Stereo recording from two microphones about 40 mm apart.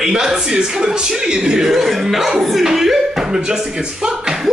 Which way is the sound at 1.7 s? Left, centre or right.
Centre.